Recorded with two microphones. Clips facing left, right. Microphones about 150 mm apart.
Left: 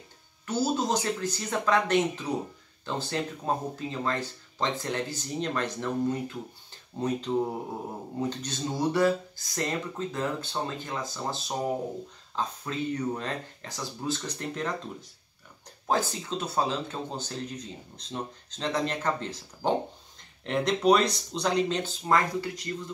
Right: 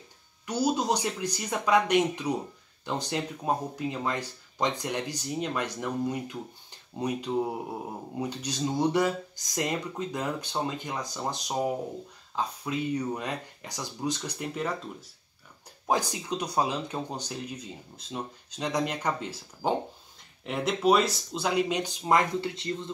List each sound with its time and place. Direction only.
0.5 s speech: 15° right (ahead or behind)